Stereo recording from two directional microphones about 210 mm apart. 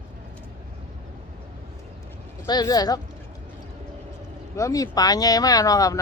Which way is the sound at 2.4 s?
20° left (ahead or behind).